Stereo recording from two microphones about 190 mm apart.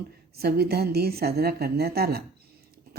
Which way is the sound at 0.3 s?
55° right (ahead or behind).